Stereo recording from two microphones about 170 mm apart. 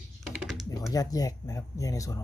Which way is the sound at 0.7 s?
20° left (ahead or behind).